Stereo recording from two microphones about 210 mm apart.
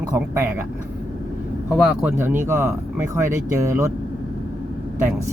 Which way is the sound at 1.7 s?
5° right (ahead or behind).